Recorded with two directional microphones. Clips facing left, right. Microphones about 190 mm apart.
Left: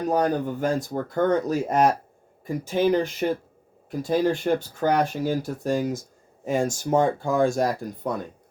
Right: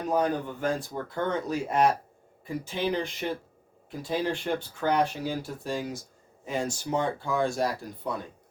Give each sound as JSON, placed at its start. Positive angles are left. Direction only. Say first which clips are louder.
{"t": 0.1, "sound": "speech", "louder": "left 3 dB", "side_deg": 40}